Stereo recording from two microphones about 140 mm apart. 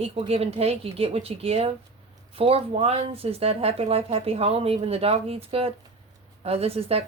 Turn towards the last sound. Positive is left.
turn(degrees=-45)  # may be behind; listen again after turning